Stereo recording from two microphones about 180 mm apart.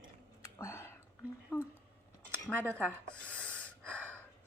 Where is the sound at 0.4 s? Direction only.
15° left (ahead or behind).